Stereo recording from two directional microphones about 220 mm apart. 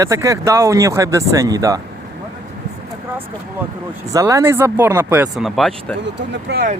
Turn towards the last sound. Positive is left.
turn(degrees=-45)  # may be behind; listen again after turning